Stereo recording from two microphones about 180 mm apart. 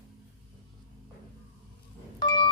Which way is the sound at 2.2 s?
20° left (ahead or behind).